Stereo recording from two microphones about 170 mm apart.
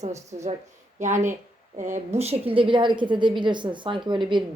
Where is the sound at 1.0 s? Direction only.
45° right (ahead or behind).